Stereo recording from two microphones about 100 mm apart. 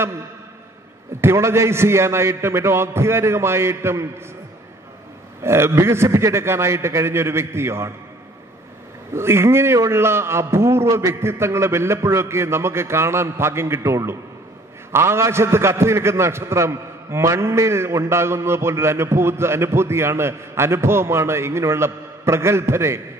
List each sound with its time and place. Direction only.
1.2 s a man's voice: 25° right (ahead or behind)
5.4 s a man's voice: 25° right (ahead or behind)
9.1 s a man's voice: 25° right (ahead or behind)